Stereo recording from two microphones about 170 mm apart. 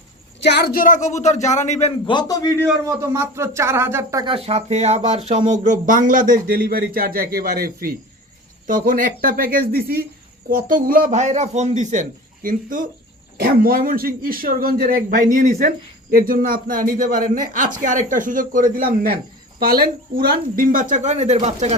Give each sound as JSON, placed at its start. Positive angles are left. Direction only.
{"t": 0.4, "sound": "speech", "side_deg": 75}
{"t": 2.0, "sound": "a man's voice", "side_deg": 25}
{"t": 3.0, "sound": "speech", "side_deg": -15}
{"t": 4.3, "sound": "a man's voice", "side_deg": -35}